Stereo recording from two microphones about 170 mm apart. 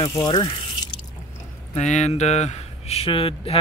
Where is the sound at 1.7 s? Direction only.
40° left (ahead or behind).